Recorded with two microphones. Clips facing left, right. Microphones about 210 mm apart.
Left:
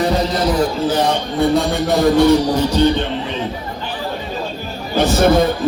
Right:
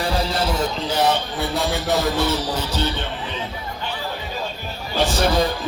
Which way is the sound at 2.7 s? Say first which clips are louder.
Left 12 dB; 15° left (ahead or behind).